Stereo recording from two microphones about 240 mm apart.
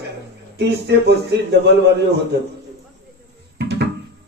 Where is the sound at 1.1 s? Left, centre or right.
Right.